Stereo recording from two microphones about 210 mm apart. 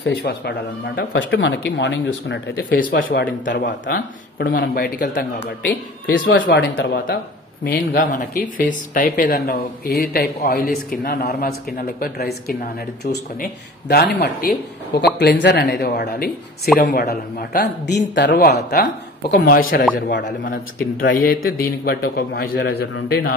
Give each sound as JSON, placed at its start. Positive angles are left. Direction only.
{"t": 0.0, "sound": "speech", "side_deg": 50}
{"t": 7.6, "sound": "speech", "side_deg": 45}